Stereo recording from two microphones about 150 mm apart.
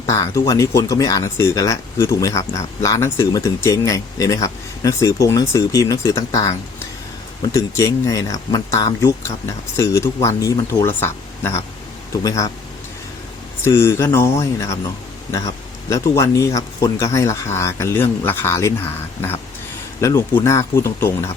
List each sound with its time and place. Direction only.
0.0 s speech: 25° left (ahead or behind)
13.7 s speech: 20° left (ahead or behind)
20.0 s speech: 20° left (ahead or behind)